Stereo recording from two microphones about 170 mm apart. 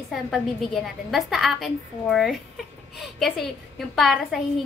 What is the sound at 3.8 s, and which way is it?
Speech, centre (ahead or behind).